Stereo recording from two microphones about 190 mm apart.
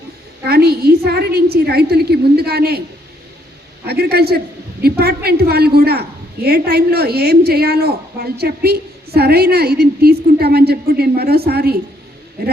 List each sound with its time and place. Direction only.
0.4 s a woman's voice: 55° right (ahead or behind)
3.8 s a woman's voice: 55° right (ahead or behind)